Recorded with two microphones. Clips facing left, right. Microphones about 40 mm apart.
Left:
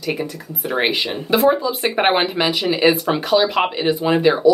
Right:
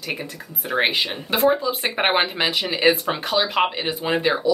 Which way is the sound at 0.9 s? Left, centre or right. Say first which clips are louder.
Left 2 dB; centre.